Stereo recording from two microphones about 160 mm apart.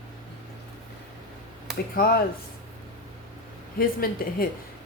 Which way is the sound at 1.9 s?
65° left (ahead or behind).